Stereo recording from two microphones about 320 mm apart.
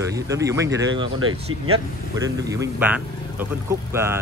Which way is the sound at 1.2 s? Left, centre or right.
Right.